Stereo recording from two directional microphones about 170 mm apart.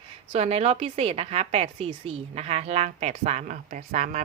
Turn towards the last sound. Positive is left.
turn(degrees=-45)  # may be behind; listen again after turning